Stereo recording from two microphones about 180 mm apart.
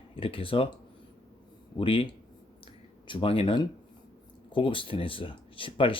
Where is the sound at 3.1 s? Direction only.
30° left (ahead or behind).